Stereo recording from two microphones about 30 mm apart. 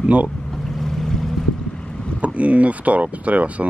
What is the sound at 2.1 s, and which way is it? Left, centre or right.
Speech, right.